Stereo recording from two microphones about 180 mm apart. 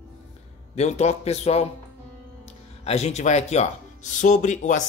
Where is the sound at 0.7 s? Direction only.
40° left (ahead or behind).